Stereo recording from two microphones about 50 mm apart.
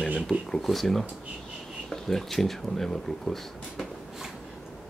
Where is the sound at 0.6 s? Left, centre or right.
Centre.